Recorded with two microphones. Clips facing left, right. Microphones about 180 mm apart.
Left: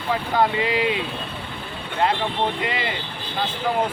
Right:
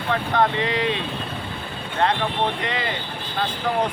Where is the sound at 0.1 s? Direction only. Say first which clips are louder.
Even; 5° left (ahead or behind).